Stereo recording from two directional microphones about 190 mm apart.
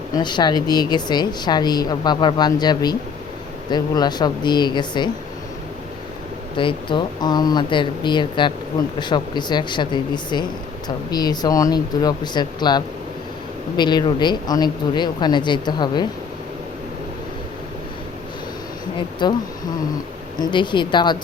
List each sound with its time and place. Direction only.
0.2 s a woman's voice: 25° left (ahead or behind)
6.6 s a woman's voice: 25° left (ahead or behind)
19.2 s a woman's voice: 25° left (ahead or behind)
20.4 s a woman's voice: 25° left (ahead or behind)